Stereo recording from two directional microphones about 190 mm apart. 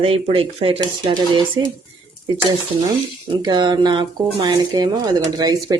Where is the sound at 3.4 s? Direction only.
20° right (ahead or behind).